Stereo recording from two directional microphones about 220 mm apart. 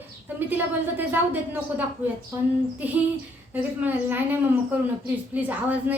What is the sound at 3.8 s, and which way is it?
A woman's voice, 10° right (ahead or behind).